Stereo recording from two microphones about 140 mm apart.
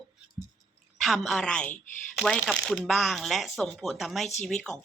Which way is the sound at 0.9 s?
Centre (ahead or behind).